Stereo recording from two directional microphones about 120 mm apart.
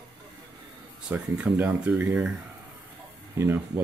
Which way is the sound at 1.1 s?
10° right (ahead or behind).